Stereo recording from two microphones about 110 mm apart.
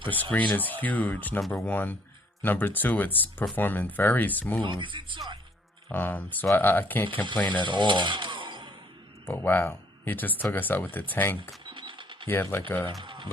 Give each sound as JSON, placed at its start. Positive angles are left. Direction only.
{"t": 0.1, "sound": "speech", "side_deg": 15}
{"t": 1.4, "sound": "speech", "side_deg": 0}
{"t": 1.6, "sound": "speech", "side_deg": 15}
{"t": 4.6, "sound": "speech", "side_deg": -45}
{"t": 5.9, "sound": "speech", "side_deg": 15}
{"t": 7.6, "sound": "chainsaw", "side_deg": -45}
{"t": 9.2, "sound": "speech", "side_deg": 20}
{"t": 11.3, "sound": "mechanisms", "side_deg": -50}
{"t": 12.3, "sound": "speech", "side_deg": 20}
{"t": 13.0, "sound": "a sound", "side_deg": -45}